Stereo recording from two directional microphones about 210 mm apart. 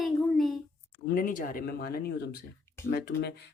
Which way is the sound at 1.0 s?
40° left (ahead or behind).